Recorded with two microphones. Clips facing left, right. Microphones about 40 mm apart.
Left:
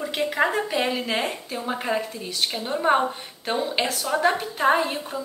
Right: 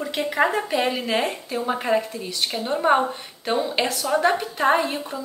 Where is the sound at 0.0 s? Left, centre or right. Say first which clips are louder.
Right 1 dB; centre.